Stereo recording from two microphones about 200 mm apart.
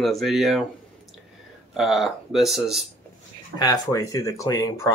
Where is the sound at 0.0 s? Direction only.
Centre (ahead or behind).